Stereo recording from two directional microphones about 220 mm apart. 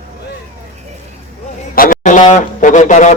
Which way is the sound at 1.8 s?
35° left (ahead or behind).